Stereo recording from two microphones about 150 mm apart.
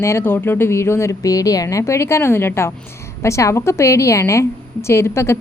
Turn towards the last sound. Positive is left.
turn(degrees=15)  # may be behind; listen again after turning